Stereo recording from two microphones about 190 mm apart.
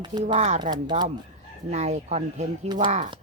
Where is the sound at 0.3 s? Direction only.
35° right (ahead or behind).